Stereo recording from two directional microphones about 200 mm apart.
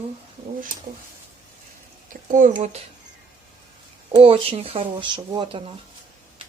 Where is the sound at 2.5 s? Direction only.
30° right (ahead or behind).